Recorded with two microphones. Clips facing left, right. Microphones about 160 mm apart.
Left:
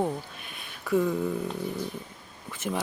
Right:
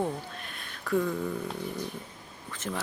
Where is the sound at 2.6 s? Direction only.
10° left (ahead or behind).